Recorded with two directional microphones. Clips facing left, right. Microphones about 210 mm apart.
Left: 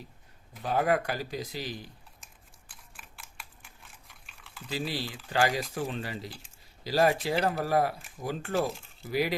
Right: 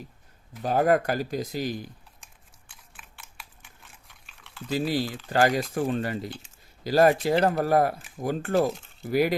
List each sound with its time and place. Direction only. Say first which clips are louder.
0.6 s speech: right 5 dB; 45° right (ahead or behind)
2.6 s typing: right 1 dB; centre (ahead or behind)
4.7 s speech: right 7 dB; 45° right (ahead or behind)
8.7 s speech: right 2 dB; centre (ahead or behind)
9.0 s speech: right 6 dB; 50° right (ahead or behind)